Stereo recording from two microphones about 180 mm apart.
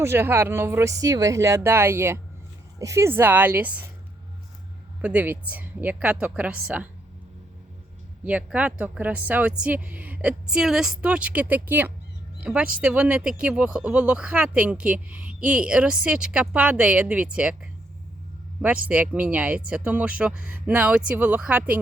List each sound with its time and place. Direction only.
0.0 s speech: 15° right (ahead or behind)
5.0 s speech: 10° right (ahead or behind)
8.2 s speech: 5° right (ahead or behind)
18.9 s speech: 10° right (ahead or behind)